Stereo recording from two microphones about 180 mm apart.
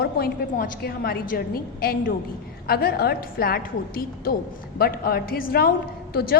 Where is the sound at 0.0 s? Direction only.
55° left (ahead or behind).